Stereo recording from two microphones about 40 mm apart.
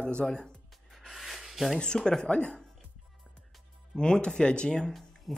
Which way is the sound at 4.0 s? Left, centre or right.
Left.